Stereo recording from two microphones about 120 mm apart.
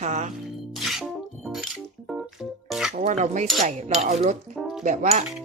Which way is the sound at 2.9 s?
85° right.